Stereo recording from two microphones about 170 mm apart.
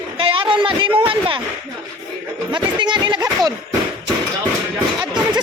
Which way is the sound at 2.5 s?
30° right (ahead or behind).